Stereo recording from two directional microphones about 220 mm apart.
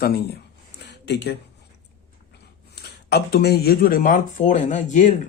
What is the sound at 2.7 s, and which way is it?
Speech, 50° left (ahead or behind).